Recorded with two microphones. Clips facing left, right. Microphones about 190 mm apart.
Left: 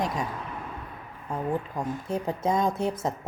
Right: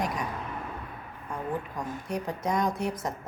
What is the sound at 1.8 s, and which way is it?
A woman's voice, 25° left (ahead or behind).